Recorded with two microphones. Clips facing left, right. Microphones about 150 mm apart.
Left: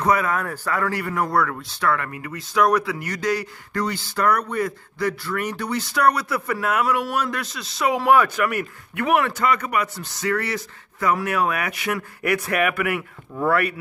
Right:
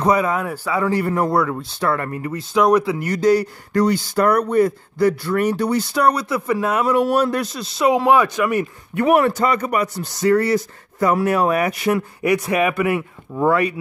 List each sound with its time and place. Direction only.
0.0 s speech: 20° right (ahead or behind)
0.9 s speech: 30° right (ahead or behind)
1.3 s speech: 20° right (ahead or behind)
1.8 s speech: 35° right (ahead or behind)
7.9 s speech: 20° right (ahead or behind)
8.9 s speech: 35° right (ahead or behind)
12.2 s speech: 20° right (ahead or behind)